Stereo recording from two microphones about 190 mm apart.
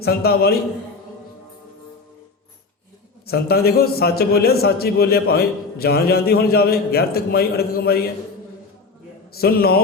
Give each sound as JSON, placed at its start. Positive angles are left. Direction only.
{"t": 0.0, "sound": "a man's voice", "side_deg": 55}
{"t": 3.2, "sound": "a man's voice", "side_deg": 55}
{"t": 9.4, "sound": "a man's voice", "side_deg": 55}